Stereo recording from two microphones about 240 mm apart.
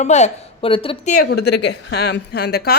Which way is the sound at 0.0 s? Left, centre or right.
Left.